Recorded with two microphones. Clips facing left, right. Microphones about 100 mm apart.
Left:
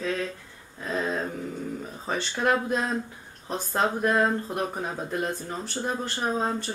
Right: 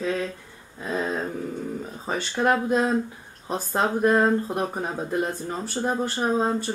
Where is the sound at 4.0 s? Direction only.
30° right (ahead or behind).